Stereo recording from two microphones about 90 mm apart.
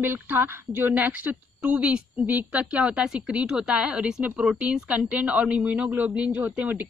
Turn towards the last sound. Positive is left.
turn(degrees=-20)  # may be behind; listen again after turning